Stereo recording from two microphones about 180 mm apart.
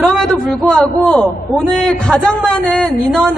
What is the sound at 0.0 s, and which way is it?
A man's voice, 5° left (ahead or behind).